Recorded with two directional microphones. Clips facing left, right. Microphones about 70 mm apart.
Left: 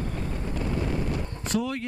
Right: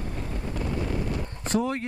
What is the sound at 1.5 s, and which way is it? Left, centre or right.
Speech, right.